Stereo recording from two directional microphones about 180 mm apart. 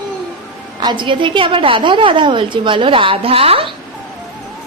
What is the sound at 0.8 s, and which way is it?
A woman's voice, 25° right (ahead or behind).